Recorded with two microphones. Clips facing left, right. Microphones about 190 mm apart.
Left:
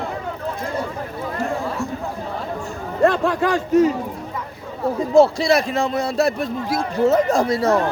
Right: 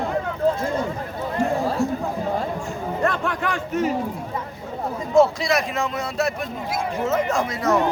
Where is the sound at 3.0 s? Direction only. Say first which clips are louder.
Left 8 dB; 30° left (ahead or behind).